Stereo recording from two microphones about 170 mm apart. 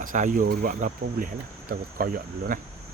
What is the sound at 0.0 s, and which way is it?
Speech, 50° right (ahead or behind).